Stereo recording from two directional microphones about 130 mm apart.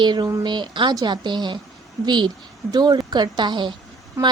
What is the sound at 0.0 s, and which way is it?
A woman's voice, 35° right (ahead or behind).